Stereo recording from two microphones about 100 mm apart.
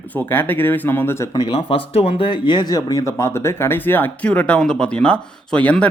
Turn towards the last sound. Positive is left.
turn(degrees=15)  # may be behind; listen again after turning